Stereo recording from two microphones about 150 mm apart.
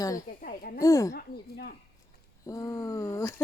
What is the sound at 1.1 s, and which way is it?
Speech, 90° left.